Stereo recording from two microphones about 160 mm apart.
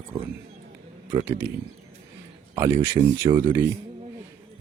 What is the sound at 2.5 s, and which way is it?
Speech, 15° right (ahead or behind).